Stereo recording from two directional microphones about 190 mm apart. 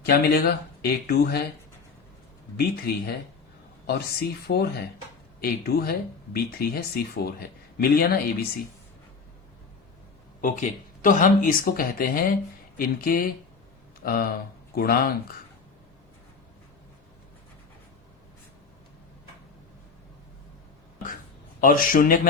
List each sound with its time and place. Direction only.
0.0 s speech: 55° left (ahead or behind)
2.6 s speech: 55° left (ahead or behind)
10.4 s speech: 45° left (ahead or behind)
21.6 s speech: 45° left (ahead or behind)